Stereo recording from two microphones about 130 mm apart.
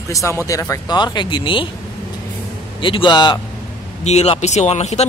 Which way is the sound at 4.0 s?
55° left (ahead or behind).